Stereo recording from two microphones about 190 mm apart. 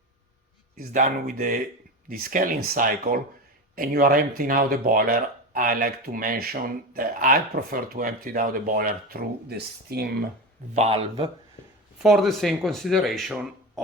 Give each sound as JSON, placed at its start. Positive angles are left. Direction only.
{"t": 0.8, "sound": "speech", "side_deg": -45}
{"t": 10.8, "sound": "a man's voice", "side_deg": -30}
{"t": 12.0, "sound": "speech", "side_deg": 0}